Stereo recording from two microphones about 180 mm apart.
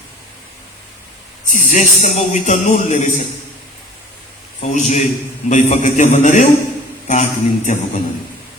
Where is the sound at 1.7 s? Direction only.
40° left (ahead or behind).